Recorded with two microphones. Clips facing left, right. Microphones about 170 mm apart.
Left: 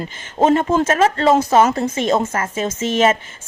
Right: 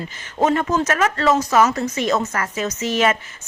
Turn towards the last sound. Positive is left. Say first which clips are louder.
# left 3 dB
turn(degrees=25)  # may be behind; listen again after turning